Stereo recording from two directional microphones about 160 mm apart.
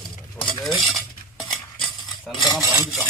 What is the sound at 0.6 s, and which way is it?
Cutlery, centre (ahead or behind).